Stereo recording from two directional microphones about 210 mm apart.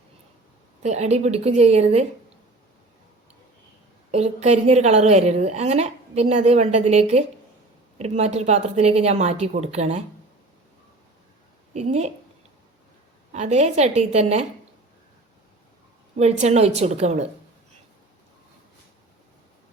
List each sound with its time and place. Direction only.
0.8 s a woman's voice: 30° right (ahead or behind)
4.1 s a woman's voice: 30° right (ahead or behind)
11.7 s a woman's voice: 30° right (ahead or behind)
13.3 s a woman's voice: 35° right (ahead or behind)
16.1 s a woman's voice: 30° right (ahead or behind)